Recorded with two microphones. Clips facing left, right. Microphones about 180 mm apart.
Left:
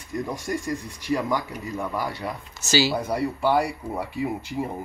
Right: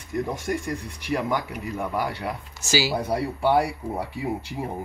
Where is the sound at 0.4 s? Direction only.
60° right (ahead or behind).